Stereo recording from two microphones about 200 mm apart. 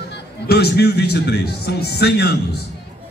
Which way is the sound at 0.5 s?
55° left (ahead or behind).